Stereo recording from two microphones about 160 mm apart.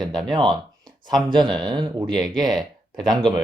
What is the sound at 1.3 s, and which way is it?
Speech, 30° right (ahead or behind).